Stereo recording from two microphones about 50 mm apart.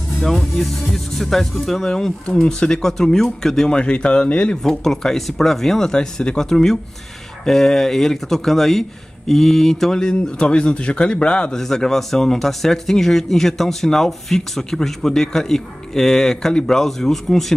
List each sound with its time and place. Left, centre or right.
0.2 s speech: centre
3.7 s speech: left
4.6 s speech: centre
11.6 s speech: centre